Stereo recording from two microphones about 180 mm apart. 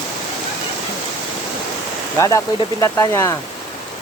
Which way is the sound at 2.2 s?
15° left (ahead or behind).